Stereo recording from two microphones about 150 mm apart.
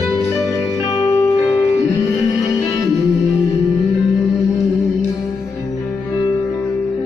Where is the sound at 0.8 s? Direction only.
20° left (ahead or behind).